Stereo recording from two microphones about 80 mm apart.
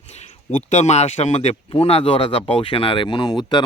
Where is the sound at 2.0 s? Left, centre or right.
Left.